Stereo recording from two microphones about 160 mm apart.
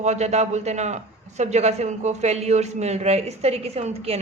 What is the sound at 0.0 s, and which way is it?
A man's voice, 45° right (ahead or behind).